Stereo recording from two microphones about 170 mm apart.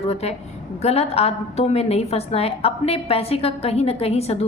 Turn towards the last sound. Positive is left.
turn(degrees=35)  # may be behind; listen again after turning